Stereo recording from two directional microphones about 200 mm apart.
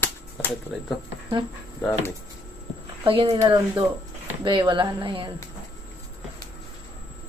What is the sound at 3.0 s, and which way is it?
A woman's voice, 25° right (ahead or behind).